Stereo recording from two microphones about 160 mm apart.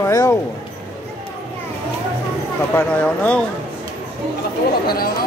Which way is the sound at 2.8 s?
10° left (ahead or behind).